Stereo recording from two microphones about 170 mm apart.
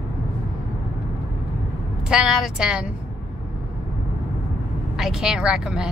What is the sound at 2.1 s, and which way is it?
Speech, 5° right (ahead or behind).